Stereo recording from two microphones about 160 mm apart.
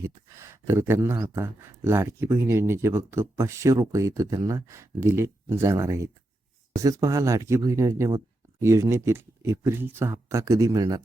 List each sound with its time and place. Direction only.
0.0 s speech: 15° right (ahead or behind)